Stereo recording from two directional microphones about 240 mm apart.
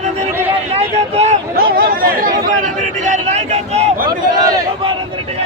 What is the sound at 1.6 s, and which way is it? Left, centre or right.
Chatter, right.